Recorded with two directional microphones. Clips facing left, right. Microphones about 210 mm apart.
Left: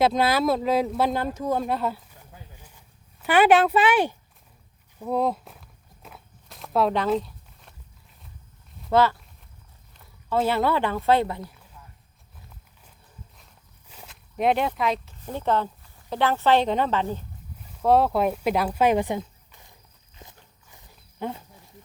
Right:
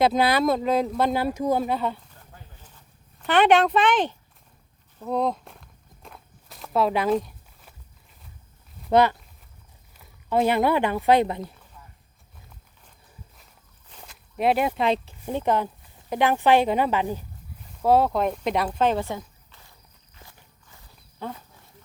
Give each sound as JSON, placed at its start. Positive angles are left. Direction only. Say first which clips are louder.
{"t": 0.0, "sound": "speech", "louder": "right 1 dB", "side_deg": 0}
{"t": 1.2, "sound": "speech", "louder": "right 3 dB", "side_deg": -10}
{"t": 1.6, "sound": "a sound", "louder": "even", "side_deg": 0}
{"t": 4.9, "sound": "walk", "louder": "left 1 dB", "side_deg": 5}
{"t": 7.2, "sound": "a sound", "louder": "right 1 dB", "side_deg": -15}
{"t": 8.9, "sound": "speech", "louder": "right 1 dB", "side_deg": -20}
{"t": 10.2, "sound": "speech", "louder": "right 2 dB", "side_deg": -15}
{"t": 13.3, "sound": "walk", "louder": "even", "side_deg": 0}
{"t": 15.2, "sound": "speech", "louder": "left 2 dB", "side_deg": -15}
{"t": 17.6, "sound": "speech", "louder": "even", "side_deg": 0}
{"t": 20.1, "sound": "walk", "louder": "left 3 dB", "side_deg": 20}